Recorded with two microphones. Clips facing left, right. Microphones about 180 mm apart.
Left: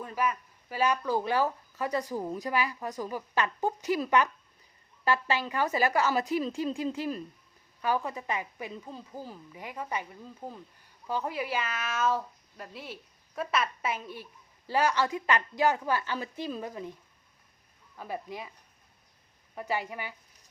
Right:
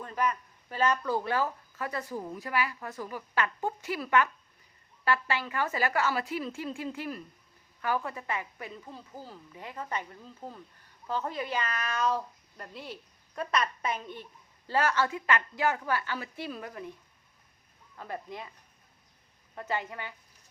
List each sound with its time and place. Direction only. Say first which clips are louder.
0.0 s a woman's voice: even; 5° left (ahead or behind)
17.9 s speech: left 2 dB; 10° left (ahead or behind)
19.5 s speech: left 1 dB; 10° left (ahead or behind)